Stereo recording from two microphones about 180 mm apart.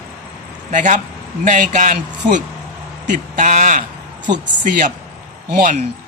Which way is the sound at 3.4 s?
45° right (ahead or behind).